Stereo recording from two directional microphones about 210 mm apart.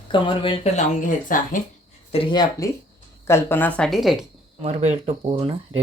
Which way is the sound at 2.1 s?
25° left (ahead or behind).